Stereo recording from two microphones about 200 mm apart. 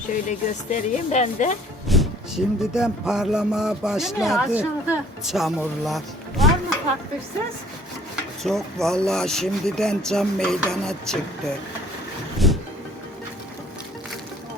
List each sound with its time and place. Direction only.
0.3 s speech: 40° left (ahead or behind)
1.9 s speech: centre (ahead or behind)
8.4 s speech: centre (ahead or behind)
12.4 s music: centre (ahead or behind)